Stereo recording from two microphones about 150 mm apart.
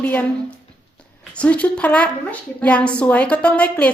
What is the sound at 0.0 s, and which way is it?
A woman's voice, 10° left (ahead or behind).